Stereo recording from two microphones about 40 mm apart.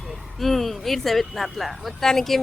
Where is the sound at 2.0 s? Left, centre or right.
Centre.